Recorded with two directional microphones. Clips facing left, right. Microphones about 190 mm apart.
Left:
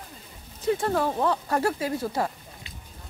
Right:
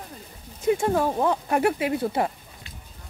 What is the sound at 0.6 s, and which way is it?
Speech, 10° right (ahead or behind).